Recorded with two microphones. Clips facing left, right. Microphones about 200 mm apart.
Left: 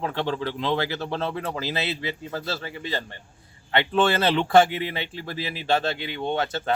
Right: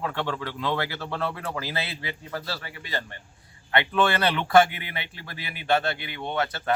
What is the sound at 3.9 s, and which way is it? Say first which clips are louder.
Speech: left 3 dB; 30° left (ahead or behind).